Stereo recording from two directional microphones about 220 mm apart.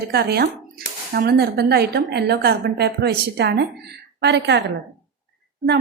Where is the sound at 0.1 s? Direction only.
45° right (ahead or behind).